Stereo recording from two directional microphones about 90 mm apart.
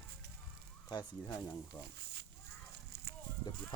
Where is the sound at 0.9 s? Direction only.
50° left (ahead or behind).